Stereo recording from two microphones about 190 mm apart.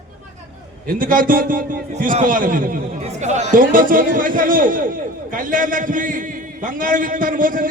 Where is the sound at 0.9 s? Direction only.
45° right (ahead or behind).